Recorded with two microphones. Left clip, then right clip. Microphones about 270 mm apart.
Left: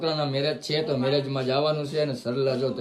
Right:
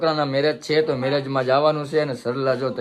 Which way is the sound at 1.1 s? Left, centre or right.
Centre.